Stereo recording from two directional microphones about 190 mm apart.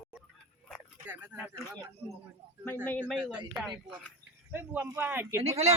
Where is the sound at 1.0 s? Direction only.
10° right (ahead or behind).